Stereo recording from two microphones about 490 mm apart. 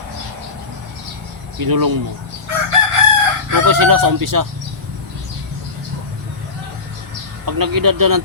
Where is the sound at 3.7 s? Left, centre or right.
Right.